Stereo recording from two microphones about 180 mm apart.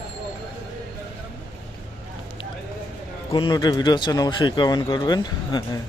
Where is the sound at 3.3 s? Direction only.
25° left (ahead or behind).